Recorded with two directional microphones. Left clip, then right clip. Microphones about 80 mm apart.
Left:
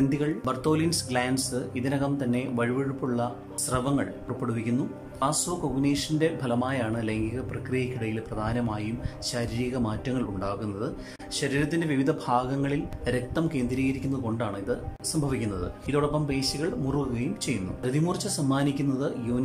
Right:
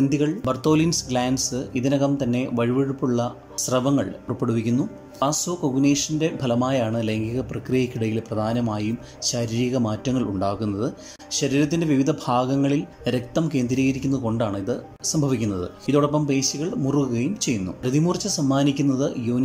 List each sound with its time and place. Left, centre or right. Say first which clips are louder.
0.1 s speech: right 5 dB; right